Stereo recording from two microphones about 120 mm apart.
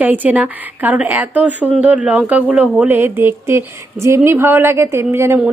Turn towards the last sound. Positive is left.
turn(degrees=-20)  # may be behind; listen again after turning